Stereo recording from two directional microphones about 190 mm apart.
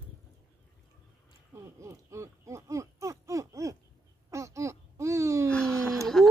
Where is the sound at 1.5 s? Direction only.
15° right (ahead or behind).